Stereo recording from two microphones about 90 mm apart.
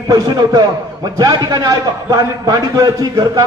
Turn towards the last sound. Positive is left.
turn(degrees=-40)  # may be behind; listen again after turning